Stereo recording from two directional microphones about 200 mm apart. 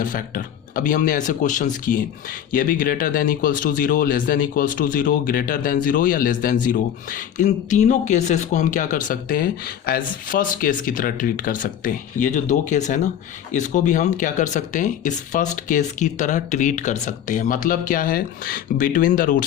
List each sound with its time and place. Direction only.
0.0 s speech: 45° left (ahead or behind)